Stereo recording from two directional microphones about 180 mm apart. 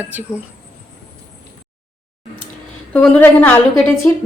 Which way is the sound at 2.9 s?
10° left (ahead or behind).